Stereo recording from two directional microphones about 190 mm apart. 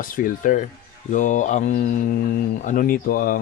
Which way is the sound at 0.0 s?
45° left (ahead or behind).